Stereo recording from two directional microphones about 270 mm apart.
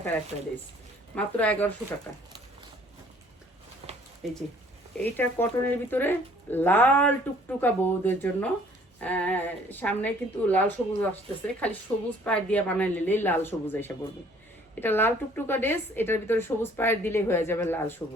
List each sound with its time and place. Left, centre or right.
1.1 s a woman's voice: centre
3.8 s a sound: right
4.2 s a woman's voice: centre